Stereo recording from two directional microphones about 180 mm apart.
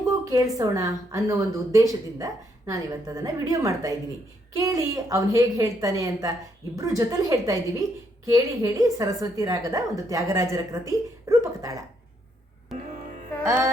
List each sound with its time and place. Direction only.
0.1 s a woman's voice: 20° right (ahead or behind)
13.4 s music: 15° right (ahead or behind)